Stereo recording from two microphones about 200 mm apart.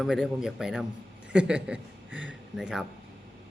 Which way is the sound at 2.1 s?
70° right (ahead or behind).